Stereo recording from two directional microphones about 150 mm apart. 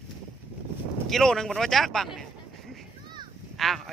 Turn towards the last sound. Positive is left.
turn(degrees=0)  # may be behind; listen again after turning